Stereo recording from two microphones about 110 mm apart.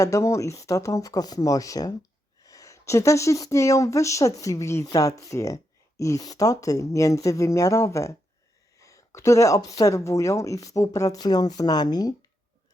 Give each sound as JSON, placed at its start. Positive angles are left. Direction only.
{"t": 0.0, "sound": "speech", "side_deg": 30}